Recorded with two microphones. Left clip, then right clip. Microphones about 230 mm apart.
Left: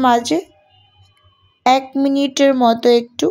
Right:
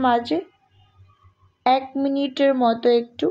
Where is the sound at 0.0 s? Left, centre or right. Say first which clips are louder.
Left 5 dB; left.